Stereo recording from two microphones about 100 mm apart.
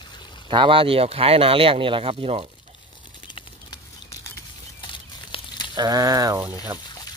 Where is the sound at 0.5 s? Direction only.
60° right (ahead or behind); by 2.4 s 85° right.